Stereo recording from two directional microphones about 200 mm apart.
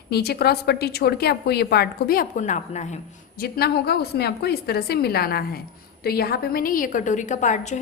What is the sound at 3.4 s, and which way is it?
A woman's voice, 50° left (ahead or behind).